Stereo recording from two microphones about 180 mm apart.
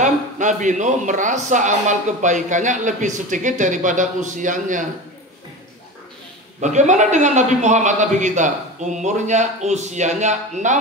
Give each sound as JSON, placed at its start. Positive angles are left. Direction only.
{"t": 0.0, "sound": "a man's voice", "side_deg": -45}
{"t": 6.6, "sound": "a man's voice", "side_deg": -40}